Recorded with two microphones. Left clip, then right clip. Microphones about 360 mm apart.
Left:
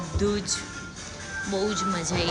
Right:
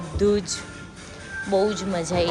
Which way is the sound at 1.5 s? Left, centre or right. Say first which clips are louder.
Right 7 dB; centre.